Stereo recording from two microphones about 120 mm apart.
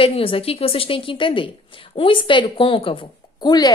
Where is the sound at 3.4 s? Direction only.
35° left (ahead or behind).